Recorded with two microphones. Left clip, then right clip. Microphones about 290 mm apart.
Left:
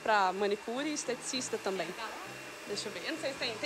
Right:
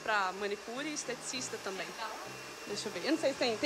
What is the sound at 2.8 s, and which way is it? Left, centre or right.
Speech, centre.